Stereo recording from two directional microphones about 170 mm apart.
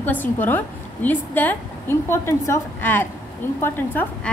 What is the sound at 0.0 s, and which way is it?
A woman's voice, 10° left (ahead or behind).